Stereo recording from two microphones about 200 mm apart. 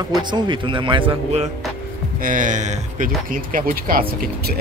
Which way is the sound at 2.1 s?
45° right (ahead or behind).